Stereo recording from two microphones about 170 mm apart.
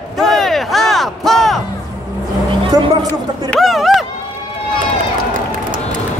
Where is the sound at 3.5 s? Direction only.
Centre (ahead or behind).